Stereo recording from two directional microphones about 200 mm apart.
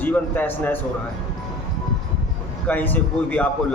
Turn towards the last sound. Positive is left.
turn(degrees=10)  # may be behind; listen again after turning